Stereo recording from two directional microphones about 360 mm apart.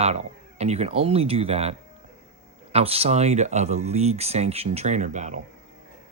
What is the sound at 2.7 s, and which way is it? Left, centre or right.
Speech, centre.